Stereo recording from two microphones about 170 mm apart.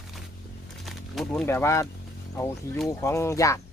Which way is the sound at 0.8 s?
Centre (ahead or behind).